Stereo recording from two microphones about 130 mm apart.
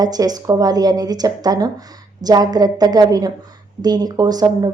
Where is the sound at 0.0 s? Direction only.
30° right (ahead or behind).